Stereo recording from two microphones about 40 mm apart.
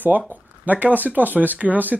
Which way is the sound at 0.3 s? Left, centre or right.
Right.